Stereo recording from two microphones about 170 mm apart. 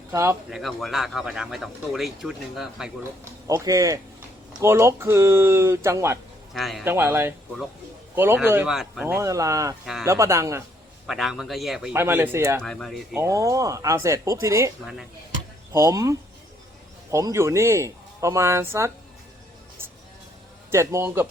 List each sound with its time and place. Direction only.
0.1 s speech: 15° right (ahead or behind)
0.5 s speech: centre (ahead or behind)
3.4 s speech: 20° right (ahead or behind)
6.5 s speech: centre (ahead or behind)
6.8 s speech: 15° right (ahead or behind)
11.0 s speech: centre (ahead or behind)
11.9 s speech: 10° right (ahead or behind)
12.6 s speech: 5° left (ahead or behind)
13.1 s speech: 20° right (ahead or behind)
15.7 s speech: 15° right (ahead or behind)
20.7 s speech: 15° right (ahead or behind)